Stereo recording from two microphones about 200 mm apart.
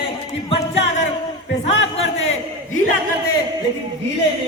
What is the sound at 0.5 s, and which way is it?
Music, 30° left (ahead or behind).